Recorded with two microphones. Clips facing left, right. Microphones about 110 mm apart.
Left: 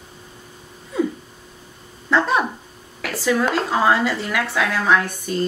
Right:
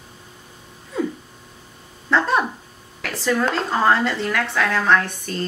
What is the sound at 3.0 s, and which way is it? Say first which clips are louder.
Speech: left 1 dB; 5° left (ahead or behind).